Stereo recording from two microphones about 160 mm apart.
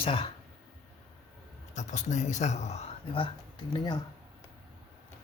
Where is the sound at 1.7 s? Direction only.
50° left (ahead or behind).